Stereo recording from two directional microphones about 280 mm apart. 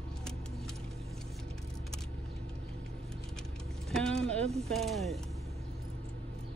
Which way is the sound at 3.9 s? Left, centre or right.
Centre.